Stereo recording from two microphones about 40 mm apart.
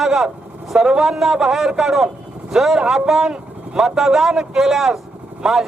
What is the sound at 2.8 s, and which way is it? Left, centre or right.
Speech, centre.